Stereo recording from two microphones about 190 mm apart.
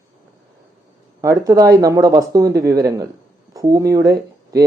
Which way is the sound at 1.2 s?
20° right (ahead or behind).